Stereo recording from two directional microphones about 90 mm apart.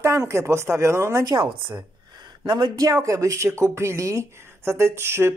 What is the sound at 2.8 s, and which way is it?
Speech, 35° right (ahead or behind).